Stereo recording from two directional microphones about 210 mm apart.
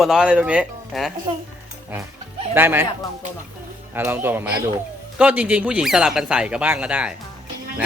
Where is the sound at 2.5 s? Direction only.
10° right (ahead or behind).